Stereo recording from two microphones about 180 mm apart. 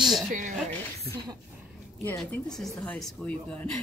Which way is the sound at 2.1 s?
10° left (ahead or behind).